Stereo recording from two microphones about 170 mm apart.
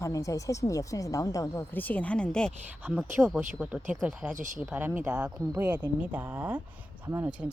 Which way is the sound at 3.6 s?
5° right (ahead or behind).